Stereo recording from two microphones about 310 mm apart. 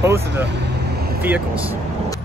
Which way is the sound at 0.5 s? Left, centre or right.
Right.